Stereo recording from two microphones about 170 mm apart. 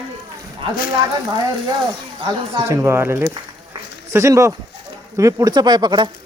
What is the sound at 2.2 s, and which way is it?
Speech, 20° right (ahead or behind).